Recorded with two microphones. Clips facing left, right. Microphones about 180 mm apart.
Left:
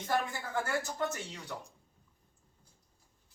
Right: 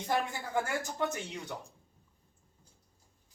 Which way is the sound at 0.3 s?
15° right (ahead or behind).